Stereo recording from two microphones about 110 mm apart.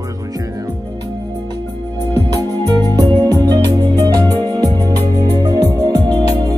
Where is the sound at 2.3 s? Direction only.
40° right (ahead or behind).